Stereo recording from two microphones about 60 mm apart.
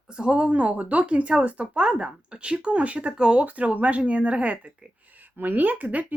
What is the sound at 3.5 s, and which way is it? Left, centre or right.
Speech, right.